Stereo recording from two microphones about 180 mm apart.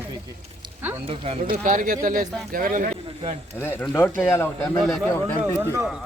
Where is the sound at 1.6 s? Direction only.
45° right (ahead or behind).